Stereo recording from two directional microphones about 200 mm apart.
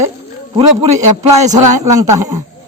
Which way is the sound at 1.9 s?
15° right (ahead or behind).